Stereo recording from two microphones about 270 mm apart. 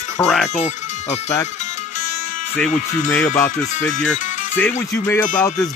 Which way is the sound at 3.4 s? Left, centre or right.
Centre.